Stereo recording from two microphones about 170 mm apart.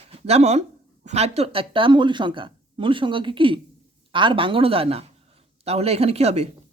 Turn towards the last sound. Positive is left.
turn(degrees=-40)  # may be behind; listen again after turning